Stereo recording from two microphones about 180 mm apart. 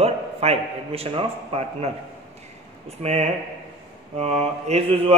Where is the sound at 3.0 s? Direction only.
35° right (ahead or behind).